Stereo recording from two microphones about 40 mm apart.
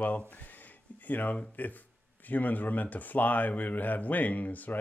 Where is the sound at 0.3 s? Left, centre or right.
Left.